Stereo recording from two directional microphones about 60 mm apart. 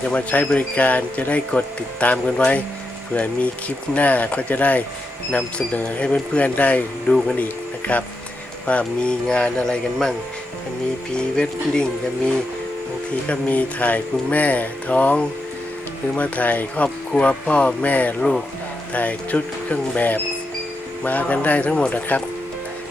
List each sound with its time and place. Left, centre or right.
0.0 s speech: left
3.9 s speech: left; by 10.2 s centre
11.3 s speech: centre